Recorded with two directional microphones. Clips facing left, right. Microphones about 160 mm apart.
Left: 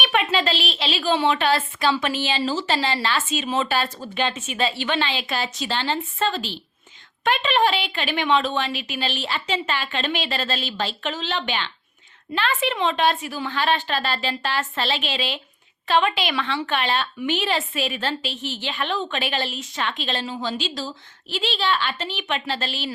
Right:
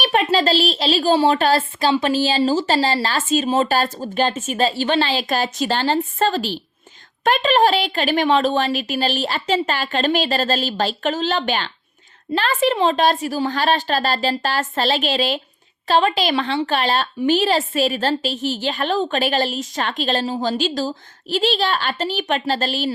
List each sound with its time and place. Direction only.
0.0 s a woman's voice: 35° right (ahead or behind)